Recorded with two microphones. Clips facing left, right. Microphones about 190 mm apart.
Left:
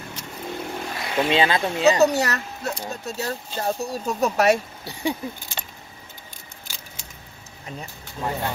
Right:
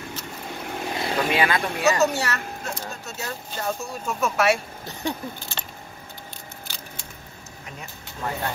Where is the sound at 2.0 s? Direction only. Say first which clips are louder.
Left 4 dB; 35° left (ahead or behind).